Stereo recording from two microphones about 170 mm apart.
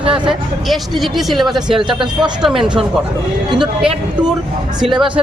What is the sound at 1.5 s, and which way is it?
Speech, 30° right (ahead or behind).